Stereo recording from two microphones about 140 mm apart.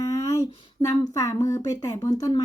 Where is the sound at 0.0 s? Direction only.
25° left (ahead or behind).